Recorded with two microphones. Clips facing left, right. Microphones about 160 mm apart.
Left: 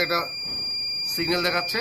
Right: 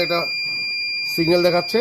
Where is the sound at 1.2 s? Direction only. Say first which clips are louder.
Right 10 dB; 35° right (ahead or behind).